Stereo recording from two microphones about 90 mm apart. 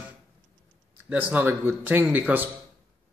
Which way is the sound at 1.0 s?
20° right (ahead or behind).